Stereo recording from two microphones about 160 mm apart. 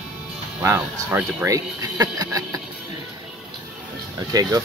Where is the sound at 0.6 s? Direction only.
10° right (ahead or behind).